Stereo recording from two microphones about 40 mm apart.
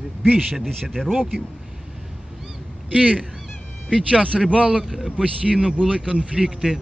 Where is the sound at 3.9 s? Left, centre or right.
Right.